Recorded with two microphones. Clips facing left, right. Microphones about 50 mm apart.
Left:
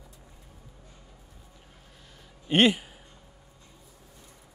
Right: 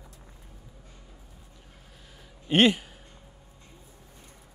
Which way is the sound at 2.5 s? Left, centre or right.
Centre.